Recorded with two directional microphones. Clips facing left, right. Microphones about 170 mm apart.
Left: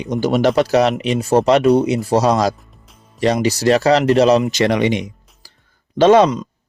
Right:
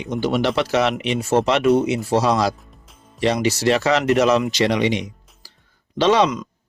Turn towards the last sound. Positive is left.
turn(degrees=30)  # may be behind; listen again after turning